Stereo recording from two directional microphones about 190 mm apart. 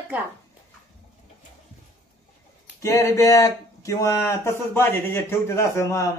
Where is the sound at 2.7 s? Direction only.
15° left (ahead or behind).